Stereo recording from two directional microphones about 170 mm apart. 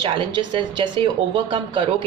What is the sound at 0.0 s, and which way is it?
Speech, 30° right (ahead or behind).